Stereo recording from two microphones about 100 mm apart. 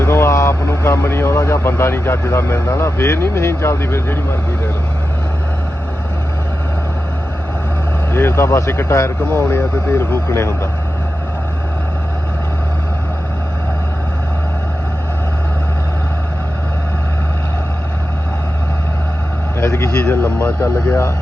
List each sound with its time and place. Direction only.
0.0 s speech: 25° left (ahead or behind)
8.1 s speech: 25° left (ahead or behind)
9.2 s speech: 15° left (ahead or behind)
19.5 s speech: 30° left (ahead or behind)
20.1 s speech: 15° left (ahead or behind)